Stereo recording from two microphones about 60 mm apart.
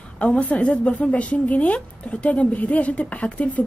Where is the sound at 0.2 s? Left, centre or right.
Left.